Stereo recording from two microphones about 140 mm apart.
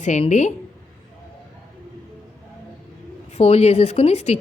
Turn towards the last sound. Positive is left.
turn(degrees=50)  # may be behind; listen again after turning